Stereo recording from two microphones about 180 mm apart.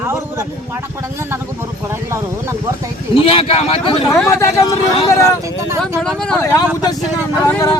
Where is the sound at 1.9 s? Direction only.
15° right (ahead or behind).